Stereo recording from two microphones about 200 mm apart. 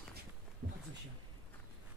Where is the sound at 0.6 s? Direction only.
65° right (ahead or behind).